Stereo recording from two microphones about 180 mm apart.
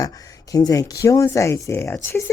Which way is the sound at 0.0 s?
20° left (ahead or behind).